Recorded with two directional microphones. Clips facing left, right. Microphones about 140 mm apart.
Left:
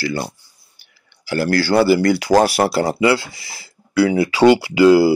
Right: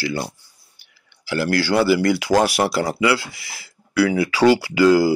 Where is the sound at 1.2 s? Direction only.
40° left (ahead or behind).